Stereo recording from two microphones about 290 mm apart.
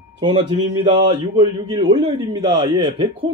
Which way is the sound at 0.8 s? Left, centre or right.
Centre.